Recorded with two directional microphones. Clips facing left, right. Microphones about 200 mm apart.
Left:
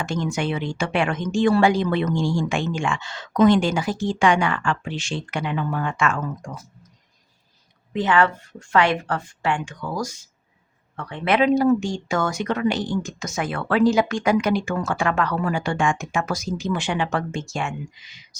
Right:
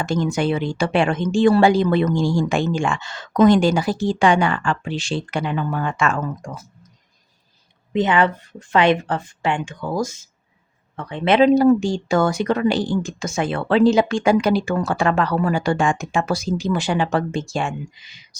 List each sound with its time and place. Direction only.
0.0 s speech: 35° right (ahead or behind)
7.9 s a woman's voice: 20° right (ahead or behind)
11.3 s speech: 35° right (ahead or behind)